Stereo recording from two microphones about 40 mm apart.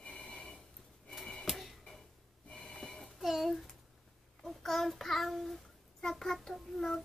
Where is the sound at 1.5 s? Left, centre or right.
Centre.